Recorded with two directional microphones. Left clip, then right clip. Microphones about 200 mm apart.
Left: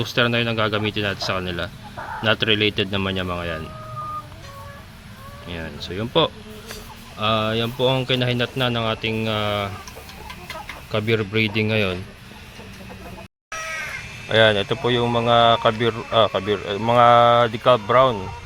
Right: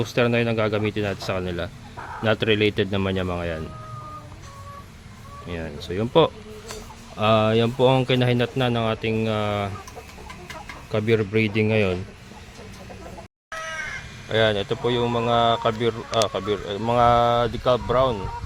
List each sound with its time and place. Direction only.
0.0 s a man's voice: 10° right (ahead or behind)
5.5 s a man's voice: 15° right (ahead or behind)
10.9 s a man's voice: 15° right (ahead or behind)
14.3 s speech: centre (ahead or behind)